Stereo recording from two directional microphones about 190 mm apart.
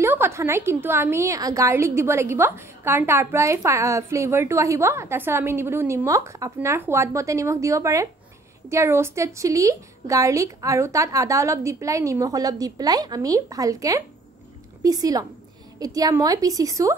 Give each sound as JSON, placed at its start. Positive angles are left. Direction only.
{"t": 0.0, "sound": "a woman's voice", "side_deg": -10}